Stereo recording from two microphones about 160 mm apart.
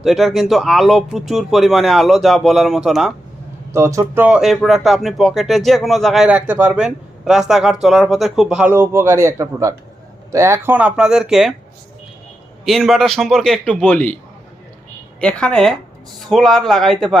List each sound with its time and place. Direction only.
0.0 s speech: centre (ahead or behind)
3.7 s speech: 15° right (ahead or behind)
12.6 s speech: centre (ahead or behind)
15.2 s speech: 5° left (ahead or behind)